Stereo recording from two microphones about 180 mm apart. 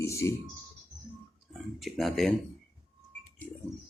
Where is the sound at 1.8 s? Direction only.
Centre (ahead or behind).